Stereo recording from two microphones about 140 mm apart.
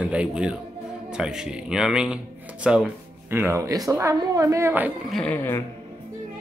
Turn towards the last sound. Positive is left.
turn(degrees=20)  # may be behind; listen again after turning